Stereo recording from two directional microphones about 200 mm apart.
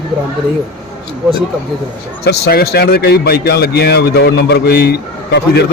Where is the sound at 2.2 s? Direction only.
55° left (ahead or behind).